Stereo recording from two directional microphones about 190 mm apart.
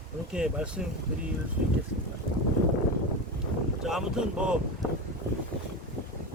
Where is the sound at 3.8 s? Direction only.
5° right (ahead or behind).